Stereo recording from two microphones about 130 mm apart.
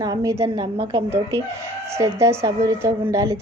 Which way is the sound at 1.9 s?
20° right (ahead or behind).